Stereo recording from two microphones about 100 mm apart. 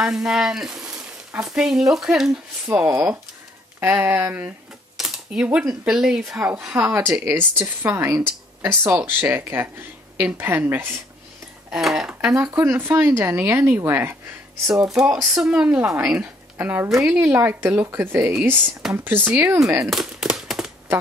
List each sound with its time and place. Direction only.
0.0 s speech: 5° right (ahead or behind)
2.7 s speech: 20° right (ahead or behind)
4.9 s speech: 5° right (ahead or behind)
7.1 s speech: 25° right (ahead or behind)
11.7 s speech: 5° right (ahead or behind)
12.4 s speech: 25° right (ahead or behind)
14.9 s speech: 5° right (ahead or behind)
16.5 s speech: 20° right (ahead or behind)
16.9 s speech: 5° right (ahead or behind)
17.2 s speech: 25° right (ahead or behind)
19.9 s a sound: 5° right (ahead or behind)